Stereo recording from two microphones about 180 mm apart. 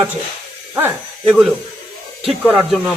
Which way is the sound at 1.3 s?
5° right (ahead or behind).